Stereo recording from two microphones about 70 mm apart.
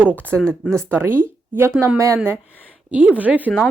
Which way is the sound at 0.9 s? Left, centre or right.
Right.